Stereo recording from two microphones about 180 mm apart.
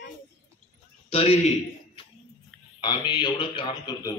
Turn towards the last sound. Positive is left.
turn(degrees=25)  # may be behind; listen again after turning